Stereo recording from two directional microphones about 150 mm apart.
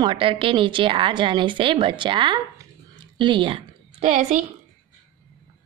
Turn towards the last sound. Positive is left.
turn(degrees=-55)  # may be behind; listen again after turning